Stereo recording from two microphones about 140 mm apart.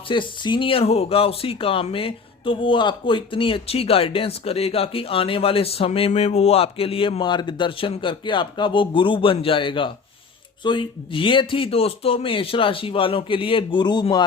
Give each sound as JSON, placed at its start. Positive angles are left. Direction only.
{"t": 0.1, "sound": "speech", "side_deg": 35}